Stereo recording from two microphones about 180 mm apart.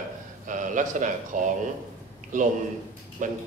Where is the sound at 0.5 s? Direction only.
45° right (ahead or behind).